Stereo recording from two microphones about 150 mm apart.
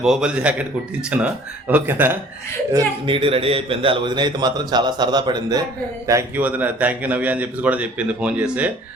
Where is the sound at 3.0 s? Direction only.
35° right (ahead or behind).